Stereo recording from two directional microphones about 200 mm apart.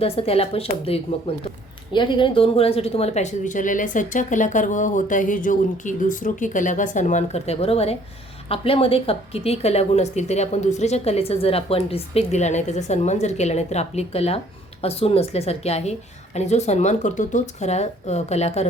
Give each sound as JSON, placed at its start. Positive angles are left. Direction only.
{"t": 0.0, "sound": "a woman's voice", "side_deg": 30}